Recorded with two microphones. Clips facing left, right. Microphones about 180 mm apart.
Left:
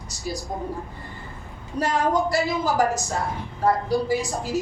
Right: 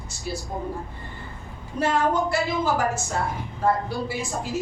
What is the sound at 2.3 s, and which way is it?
Music, 40° left (ahead or behind).